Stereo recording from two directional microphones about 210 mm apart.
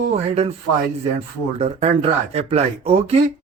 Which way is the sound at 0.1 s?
30° right (ahead or behind).